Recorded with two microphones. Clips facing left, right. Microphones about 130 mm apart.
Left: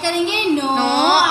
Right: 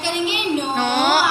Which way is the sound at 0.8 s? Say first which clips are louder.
Left 1 dB; centre (ahead or behind).